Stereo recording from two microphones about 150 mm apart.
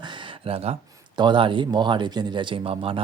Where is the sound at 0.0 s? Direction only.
30° right (ahead or behind).